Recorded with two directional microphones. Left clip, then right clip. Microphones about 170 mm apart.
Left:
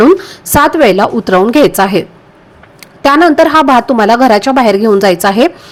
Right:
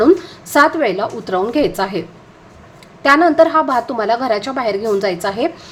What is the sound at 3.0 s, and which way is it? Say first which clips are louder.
A woman's voice: left 4 dB; 40° left (ahead or behind).